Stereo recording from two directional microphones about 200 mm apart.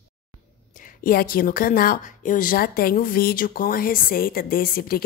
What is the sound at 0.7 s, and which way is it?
A woman's voice, 40° left (ahead or behind).